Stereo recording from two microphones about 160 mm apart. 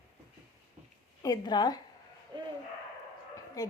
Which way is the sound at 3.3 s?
20° left (ahead or behind).